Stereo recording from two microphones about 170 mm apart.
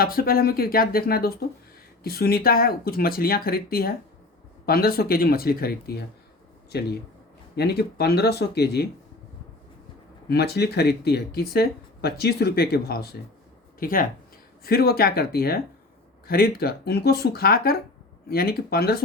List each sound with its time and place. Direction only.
0.0 s speech: 60° left (ahead or behind)
10.2 s speech: 70° left (ahead or behind)
13.7 s speech: 55° left (ahead or behind)